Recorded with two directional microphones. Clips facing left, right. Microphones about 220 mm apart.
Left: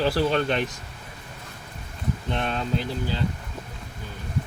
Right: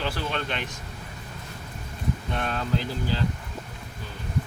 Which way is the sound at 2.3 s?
25° left (ahead or behind).